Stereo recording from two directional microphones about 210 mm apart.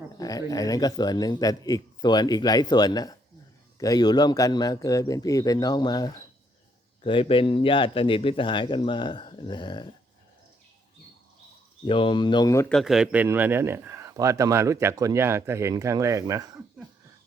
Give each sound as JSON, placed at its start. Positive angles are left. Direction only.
{"t": 0.2, "sound": "a man's voice", "side_deg": 15}
{"t": 11.9, "sound": "a man's voice", "side_deg": 25}
{"t": 12.7, "sound": "speech", "side_deg": 0}